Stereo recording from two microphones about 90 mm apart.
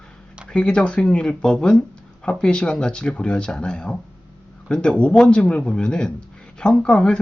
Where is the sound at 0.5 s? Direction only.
10° left (ahead or behind).